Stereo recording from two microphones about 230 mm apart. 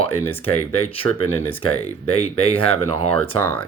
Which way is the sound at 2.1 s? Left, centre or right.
Left.